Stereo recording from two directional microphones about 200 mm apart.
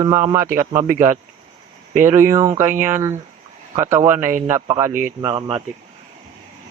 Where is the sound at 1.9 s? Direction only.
10° right (ahead or behind).